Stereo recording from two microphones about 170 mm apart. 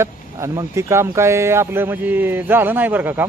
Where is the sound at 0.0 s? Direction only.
15° right (ahead or behind).